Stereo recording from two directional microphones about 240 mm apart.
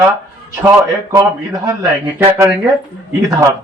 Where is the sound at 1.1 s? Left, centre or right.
Centre.